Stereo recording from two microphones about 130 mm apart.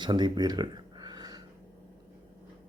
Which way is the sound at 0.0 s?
35° right (ahead or behind).